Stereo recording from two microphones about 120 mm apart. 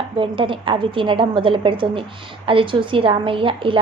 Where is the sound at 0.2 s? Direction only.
45° right (ahead or behind).